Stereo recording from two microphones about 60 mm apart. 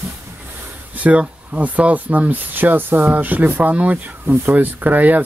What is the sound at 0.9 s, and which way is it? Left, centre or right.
Speech, right.